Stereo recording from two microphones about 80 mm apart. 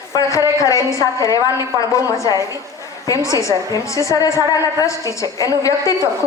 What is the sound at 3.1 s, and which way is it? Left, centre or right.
A woman's voice, left.